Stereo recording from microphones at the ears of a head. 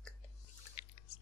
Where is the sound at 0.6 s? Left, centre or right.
Left.